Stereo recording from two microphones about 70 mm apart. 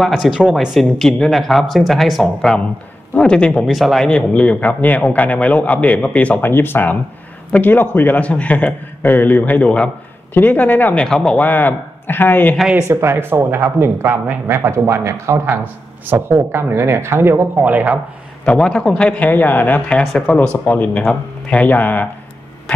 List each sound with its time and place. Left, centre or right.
0.0 s speech: centre
0.7 s speech: centre
3.2 s a man's voice: centre
3.6 s speech: centre; by 6.5 s left
6.5 s speech: left
11.0 s a man's voice: centre
11.3 s speech: left
12.9 s speech: right
15.4 s speech: right
18.4 s a man's voice: centre
21.0 s speech: centre